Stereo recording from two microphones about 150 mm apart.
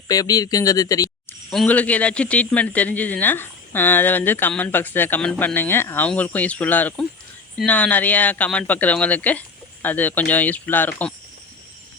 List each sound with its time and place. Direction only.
0.1 s speech: 25° left (ahead or behind)
1.5 s a man's voice: 10° left (ahead or behind)